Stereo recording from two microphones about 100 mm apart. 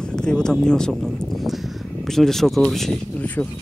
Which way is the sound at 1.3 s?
Centre (ahead or behind).